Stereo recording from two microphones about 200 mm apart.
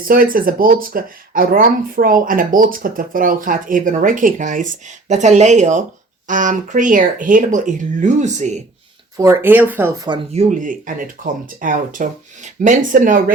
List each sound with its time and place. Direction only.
0.1 s speech: 45° right (ahead or behind)
9.1 s speech: 15° right (ahead or behind)
10.1 s speech: 35° right (ahead or behind)